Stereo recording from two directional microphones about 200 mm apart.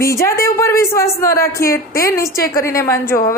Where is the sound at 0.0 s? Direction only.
15° left (ahead or behind).